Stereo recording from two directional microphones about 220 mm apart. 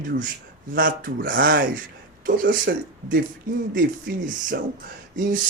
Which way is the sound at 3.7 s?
40° right (ahead or behind).